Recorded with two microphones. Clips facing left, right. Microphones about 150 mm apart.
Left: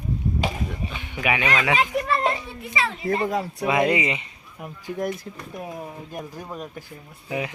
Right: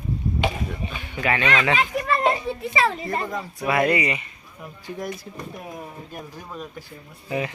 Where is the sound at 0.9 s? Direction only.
20° left (ahead or behind).